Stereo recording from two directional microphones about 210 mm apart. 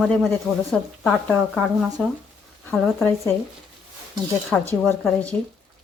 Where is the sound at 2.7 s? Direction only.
10° left (ahead or behind).